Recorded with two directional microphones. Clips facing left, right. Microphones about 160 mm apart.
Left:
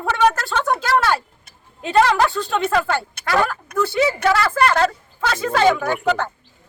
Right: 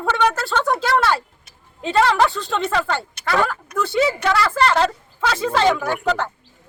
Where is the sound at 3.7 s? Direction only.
55° left (ahead or behind).